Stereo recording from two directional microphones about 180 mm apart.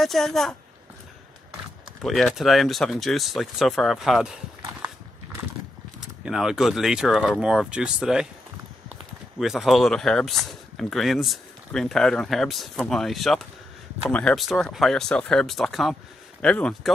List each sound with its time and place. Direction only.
0.0 s speech: centre (ahead or behind)
2.0 s speech: centre (ahead or behind)
5.9 s speech: 5° right (ahead or behind)
9.4 s speech: centre (ahead or behind)